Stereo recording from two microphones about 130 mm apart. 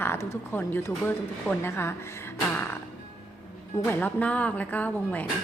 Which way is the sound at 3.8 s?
15° left (ahead or behind).